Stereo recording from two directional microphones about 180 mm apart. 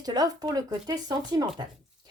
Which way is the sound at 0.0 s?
20° right (ahead or behind).